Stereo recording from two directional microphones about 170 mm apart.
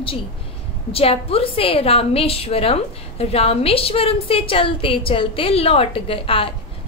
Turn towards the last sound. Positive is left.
turn(degrees=30)  # may be behind; listen again after turning